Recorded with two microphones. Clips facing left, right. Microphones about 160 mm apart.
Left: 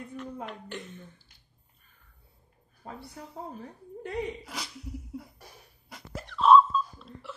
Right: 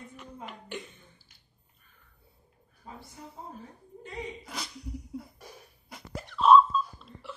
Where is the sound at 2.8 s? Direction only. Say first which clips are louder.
Left 4 dB; 65° left (ahead or behind).